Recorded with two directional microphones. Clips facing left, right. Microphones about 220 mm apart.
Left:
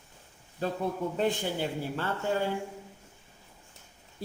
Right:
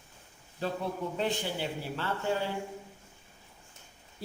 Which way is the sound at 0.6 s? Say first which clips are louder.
Left 3 dB; 45° left (ahead or behind).